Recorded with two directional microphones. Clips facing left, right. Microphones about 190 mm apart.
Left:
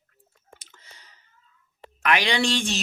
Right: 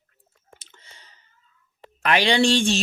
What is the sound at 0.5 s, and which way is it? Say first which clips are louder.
Chewing: right 1 dB; 30° right (ahead or behind).